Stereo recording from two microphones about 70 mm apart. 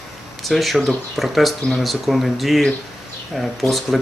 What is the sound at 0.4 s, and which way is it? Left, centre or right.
Speech, centre.